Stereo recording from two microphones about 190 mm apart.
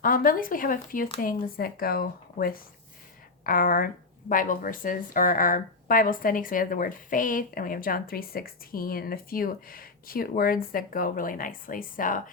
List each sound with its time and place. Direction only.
0.0 s a woman's voice: 45° left (ahead or behind)